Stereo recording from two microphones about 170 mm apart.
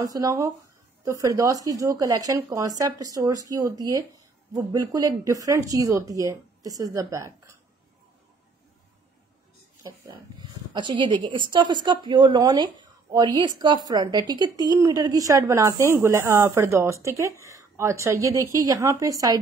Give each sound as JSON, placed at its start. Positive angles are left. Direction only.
{"t": 0.0, "sound": "speech", "side_deg": -20}
{"t": 10.7, "sound": "speech", "side_deg": -25}